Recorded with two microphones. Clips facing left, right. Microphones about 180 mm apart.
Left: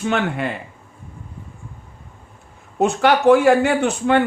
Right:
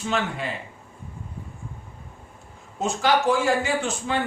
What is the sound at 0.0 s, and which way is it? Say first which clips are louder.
Speech: left 6 dB; 60° left (ahead or behind).